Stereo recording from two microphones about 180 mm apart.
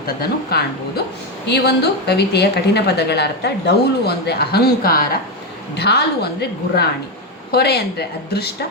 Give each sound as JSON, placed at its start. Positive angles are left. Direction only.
{"t": 0.2, "sound": "a woman's voice", "side_deg": 60}
{"t": 7.5, "sound": "a woman's voice", "side_deg": 65}